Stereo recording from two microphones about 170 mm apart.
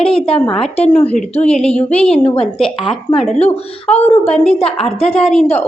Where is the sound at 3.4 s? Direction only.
40° left (ahead or behind).